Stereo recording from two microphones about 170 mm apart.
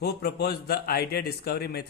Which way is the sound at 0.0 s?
70° left (ahead or behind).